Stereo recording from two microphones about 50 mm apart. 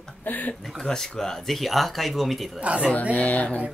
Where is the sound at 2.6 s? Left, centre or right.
Right.